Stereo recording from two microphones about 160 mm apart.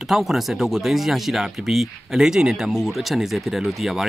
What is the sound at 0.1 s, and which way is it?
Speech, centre (ahead or behind).